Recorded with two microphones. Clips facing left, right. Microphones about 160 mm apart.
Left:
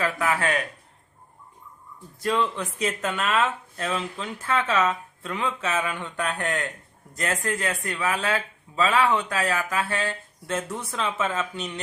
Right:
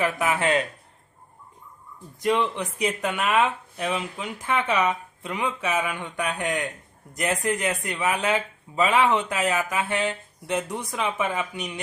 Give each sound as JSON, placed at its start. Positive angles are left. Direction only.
{"t": 0.0, "sound": "speech", "side_deg": -20}
{"t": 2.2, "sound": "speech", "side_deg": -20}